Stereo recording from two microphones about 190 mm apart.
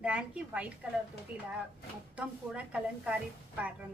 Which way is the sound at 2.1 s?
5° right (ahead or behind).